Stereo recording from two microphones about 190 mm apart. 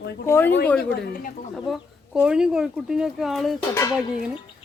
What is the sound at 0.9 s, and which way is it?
Speech, 50° left (ahead or behind).